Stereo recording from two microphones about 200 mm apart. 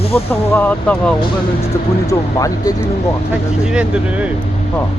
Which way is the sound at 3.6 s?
5° right (ahead or behind).